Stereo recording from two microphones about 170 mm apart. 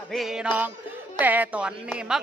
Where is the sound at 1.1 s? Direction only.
10° right (ahead or behind).